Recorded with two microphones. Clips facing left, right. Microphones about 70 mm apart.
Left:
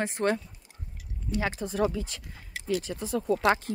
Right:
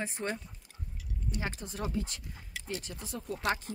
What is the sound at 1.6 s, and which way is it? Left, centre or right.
Speech, left.